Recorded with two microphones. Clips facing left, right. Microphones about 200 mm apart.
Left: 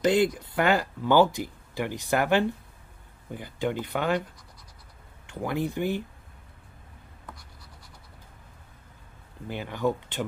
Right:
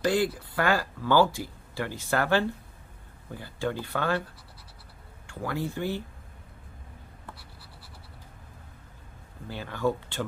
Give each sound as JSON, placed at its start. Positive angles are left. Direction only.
{"t": 0.0, "sound": "speech", "side_deg": 20}
{"t": 5.2, "sound": "speech", "side_deg": 20}
{"t": 9.5, "sound": "speech", "side_deg": 15}